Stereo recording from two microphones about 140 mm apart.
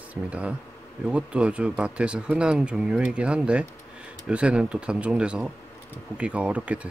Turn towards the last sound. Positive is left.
turn(degrees=-10)  # may be behind; listen again after turning